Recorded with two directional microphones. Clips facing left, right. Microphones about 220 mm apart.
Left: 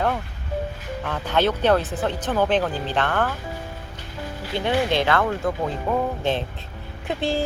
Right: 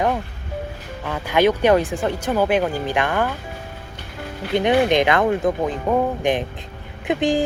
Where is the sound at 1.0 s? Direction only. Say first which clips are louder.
Right 4 dB; 10° right (ahead or behind).